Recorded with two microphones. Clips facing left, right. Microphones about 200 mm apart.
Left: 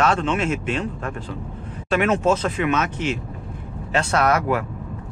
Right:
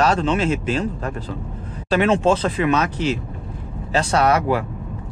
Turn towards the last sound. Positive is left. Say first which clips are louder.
# right 2 dB
turn(degrees=-30)  # may be behind; listen again after turning